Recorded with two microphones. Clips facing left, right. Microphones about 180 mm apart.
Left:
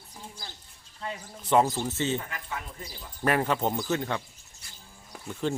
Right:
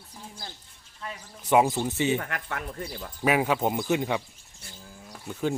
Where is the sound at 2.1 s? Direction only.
65° right (ahead or behind).